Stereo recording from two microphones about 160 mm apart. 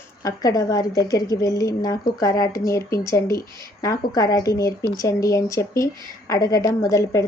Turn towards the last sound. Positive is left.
turn(degrees=20)  # may be behind; listen again after turning